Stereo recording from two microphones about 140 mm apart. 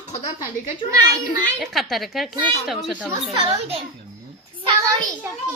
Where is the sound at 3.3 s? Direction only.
35° right (ahead or behind).